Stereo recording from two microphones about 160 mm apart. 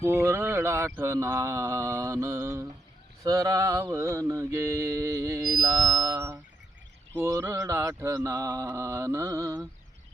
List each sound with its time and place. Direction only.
0.1 s mantra: 15° right (ahead or behind)